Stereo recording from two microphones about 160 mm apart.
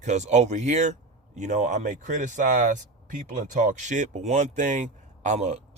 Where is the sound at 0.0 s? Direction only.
45° right (ahead or behind).